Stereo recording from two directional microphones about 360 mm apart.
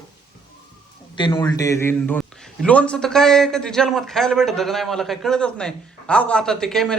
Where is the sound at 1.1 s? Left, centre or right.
Centre.